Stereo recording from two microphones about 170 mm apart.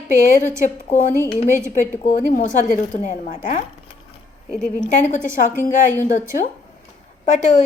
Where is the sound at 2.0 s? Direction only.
50° left (ahead or behind).